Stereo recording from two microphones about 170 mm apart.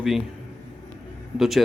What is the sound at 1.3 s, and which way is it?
Speech, centre (ahead or behind).